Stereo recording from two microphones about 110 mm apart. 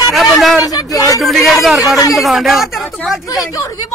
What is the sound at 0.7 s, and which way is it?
Speech, 30° left (ahead or behind).